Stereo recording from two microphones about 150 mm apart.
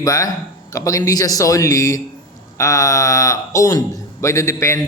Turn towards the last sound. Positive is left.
turn(degrees=20)  # may be behind; listen again after turning